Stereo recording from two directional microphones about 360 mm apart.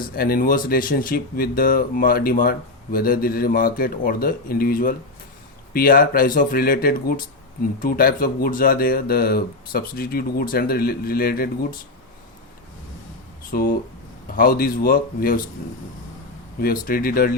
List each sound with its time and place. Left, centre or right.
0.0 s speech: left
13.5 s speech: left
16.6 s speech: left